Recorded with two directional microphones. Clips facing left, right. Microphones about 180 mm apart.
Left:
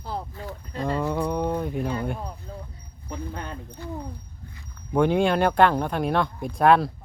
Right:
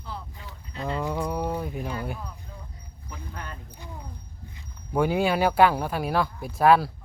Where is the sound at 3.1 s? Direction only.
30° left (ahead or behind).